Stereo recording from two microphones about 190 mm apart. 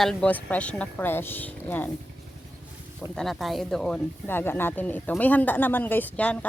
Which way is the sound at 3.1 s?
Centre (ahead or behind).